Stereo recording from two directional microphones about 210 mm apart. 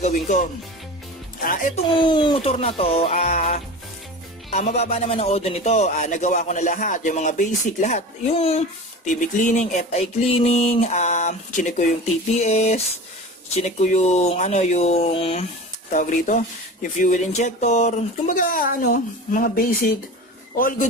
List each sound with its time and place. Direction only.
0.0 s speech: 35° left (ahead or behind)
1.8 s speech: 20° left (ahead or behind)
15.9 s speech: 35° left (ahead or behind)